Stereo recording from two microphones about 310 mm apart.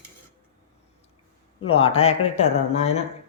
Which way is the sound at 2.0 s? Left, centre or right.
Left.